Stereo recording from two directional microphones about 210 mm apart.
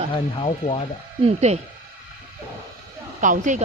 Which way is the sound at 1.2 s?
30° right (ahead or behind).